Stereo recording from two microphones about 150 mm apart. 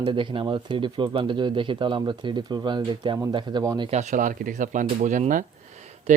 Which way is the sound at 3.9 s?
50° right (ahead or behind).